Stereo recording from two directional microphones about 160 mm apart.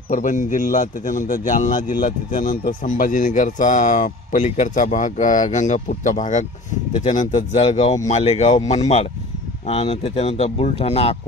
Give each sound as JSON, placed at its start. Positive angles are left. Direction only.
{"t": 0.1, "sound": "a man's voice", "side_deg": 50}